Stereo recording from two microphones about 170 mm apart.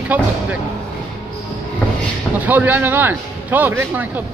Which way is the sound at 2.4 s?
10° right (ahead or behind).